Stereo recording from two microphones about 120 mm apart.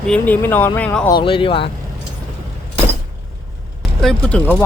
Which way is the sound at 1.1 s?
45° left (ahead or behind).